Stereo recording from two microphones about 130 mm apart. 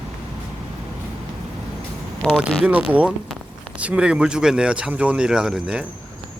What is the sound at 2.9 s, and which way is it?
Speech, 10° right (ahead or behind).